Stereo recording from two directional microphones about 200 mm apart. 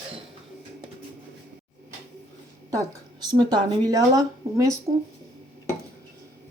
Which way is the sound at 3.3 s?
20° right (ahead or behind).